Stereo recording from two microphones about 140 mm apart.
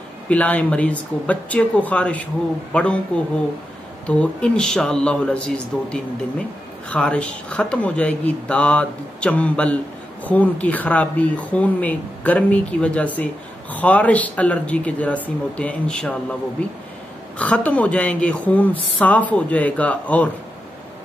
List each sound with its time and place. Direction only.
0.3 s speech: 10° left (ahead or behind)
4.1 s speech: 5° left (ahead or behind)